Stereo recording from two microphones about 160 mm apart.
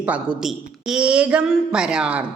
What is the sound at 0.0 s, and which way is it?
A woman's voice, 5° right (ahead or behind).